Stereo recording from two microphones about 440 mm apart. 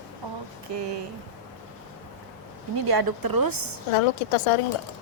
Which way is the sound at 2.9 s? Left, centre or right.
Right.